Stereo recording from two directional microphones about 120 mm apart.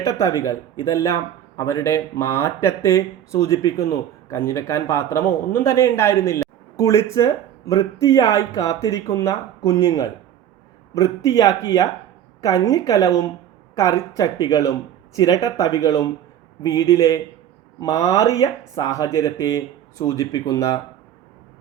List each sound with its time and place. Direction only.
0.0 s a man's voice: 25° left (ahead or behind)